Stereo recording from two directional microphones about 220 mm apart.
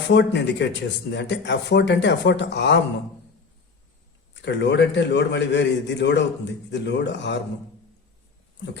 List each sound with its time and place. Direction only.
0.1 s a man's voice: 55° left (ahead or behind)
4.4 s a man's voice: 55° left (ahead or behind)